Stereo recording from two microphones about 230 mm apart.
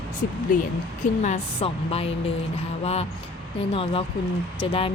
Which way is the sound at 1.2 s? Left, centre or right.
Left.